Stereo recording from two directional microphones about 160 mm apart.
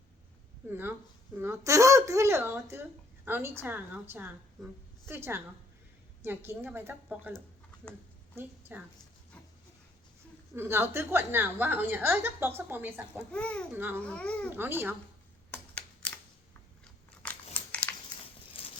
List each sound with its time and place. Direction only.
0.7 s a woman's voice: 15° right (ahead or behind)
10.5 s a woman's voice: 15° right (ahead or behind)
13.3 s speech: 5° left (ahead or behind)
13.7 s a woman's voice: 15° right (ahead or behind)
14.0 s speech: 10° left (ahead or behind)
14.5 s a woman's voice: 15° right (ahead or behind)
15.5 s a sound: 10° left (ahead or behind)
17.2 s crumpling: 10° left (ahead or behind)
18.5 s a sound: 35° left (ahead or behind)